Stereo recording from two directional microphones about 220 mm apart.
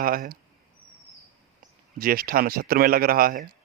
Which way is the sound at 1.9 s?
40° right (ahead or behind).